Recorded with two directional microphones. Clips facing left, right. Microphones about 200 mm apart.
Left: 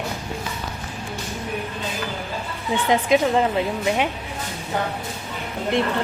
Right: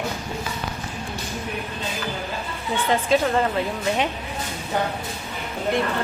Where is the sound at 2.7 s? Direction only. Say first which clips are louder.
Left 2 dB; 15° left (ahead or behind).